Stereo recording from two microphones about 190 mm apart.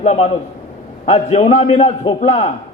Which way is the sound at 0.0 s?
35° left (ahead or behind).